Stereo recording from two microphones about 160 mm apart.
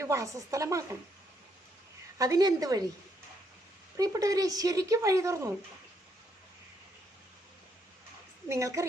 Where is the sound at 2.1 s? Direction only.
20° right (ahead or behind).